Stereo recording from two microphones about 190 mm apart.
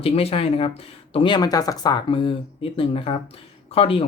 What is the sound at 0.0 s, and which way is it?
Speech, 30° left (ahead or behind).